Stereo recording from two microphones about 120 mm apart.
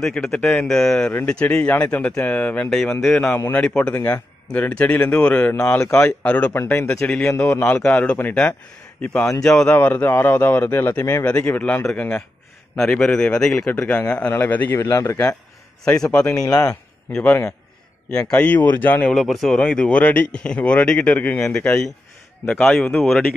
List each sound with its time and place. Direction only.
0.0 s a man's voice: 5° left (ahead or behind)
7.1 s a man's voice: 5° left (ahead or behind); by 15.1 s 25° left (ahead or behind)
16.0 s speech: 10° left (ahead or behind)
16.3 s speech: 30° left (ahead or behind)
17.1 s speech: 15° left (ahead or behind)
19.1 s a man's voice: centre (ahead or behind)